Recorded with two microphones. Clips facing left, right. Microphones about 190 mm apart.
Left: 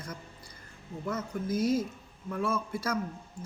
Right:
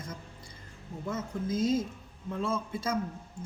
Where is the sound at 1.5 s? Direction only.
25° right (ahead or behind).